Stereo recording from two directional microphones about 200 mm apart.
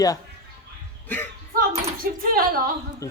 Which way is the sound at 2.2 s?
45° right (ahead or behind).